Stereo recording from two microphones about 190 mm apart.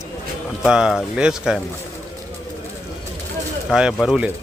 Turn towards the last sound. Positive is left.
turn(degrees=-5)  # may be behind; listen again after turning